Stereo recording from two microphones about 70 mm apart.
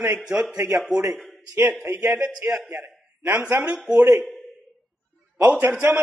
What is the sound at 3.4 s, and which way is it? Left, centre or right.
Speech, centre.